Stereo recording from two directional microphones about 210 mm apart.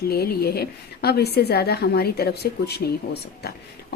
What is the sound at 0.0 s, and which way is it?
Speech, 45° left (ahead or behind).